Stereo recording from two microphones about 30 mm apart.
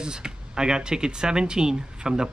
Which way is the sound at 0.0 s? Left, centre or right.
Right.